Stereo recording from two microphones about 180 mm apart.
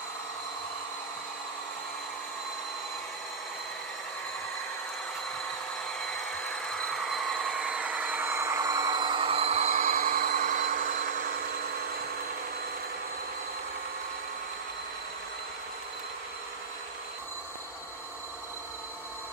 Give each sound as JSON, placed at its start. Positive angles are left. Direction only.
{"t": 6.5, "sound": "vehicle", "side_deg": 5}